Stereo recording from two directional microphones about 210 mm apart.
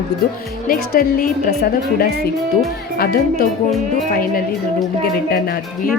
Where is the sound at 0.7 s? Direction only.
45° left (ahead or behind).